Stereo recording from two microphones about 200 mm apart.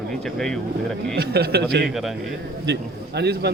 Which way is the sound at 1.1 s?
55° right (ahead or behind).